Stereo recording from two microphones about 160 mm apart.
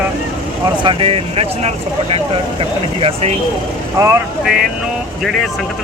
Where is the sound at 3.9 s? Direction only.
15° right (ahead or behind).